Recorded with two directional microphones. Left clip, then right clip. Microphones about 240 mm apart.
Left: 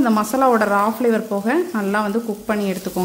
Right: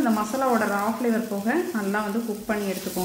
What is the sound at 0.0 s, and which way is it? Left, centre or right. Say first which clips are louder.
Frying: left 7 dB; left.